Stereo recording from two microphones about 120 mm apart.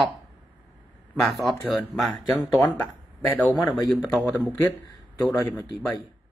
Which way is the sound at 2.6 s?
10° left (ahead or behind).